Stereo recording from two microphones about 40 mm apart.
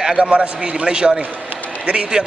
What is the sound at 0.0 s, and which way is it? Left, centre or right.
Speech, right.